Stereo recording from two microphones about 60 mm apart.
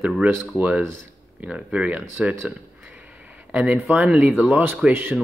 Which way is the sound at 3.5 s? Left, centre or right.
Right.